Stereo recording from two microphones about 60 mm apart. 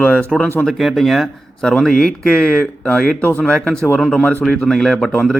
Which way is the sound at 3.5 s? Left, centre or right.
Centre.